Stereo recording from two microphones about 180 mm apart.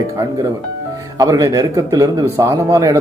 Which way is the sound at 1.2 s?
20° right (ahead or behind).